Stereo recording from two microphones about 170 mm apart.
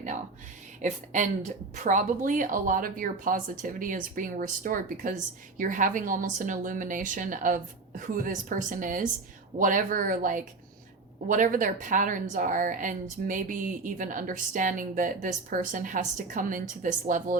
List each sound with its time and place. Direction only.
0.8 s a woman's voice: 45° right (ahead or behind)